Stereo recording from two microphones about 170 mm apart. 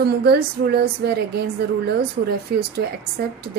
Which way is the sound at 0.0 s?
70° right (ahead or behind).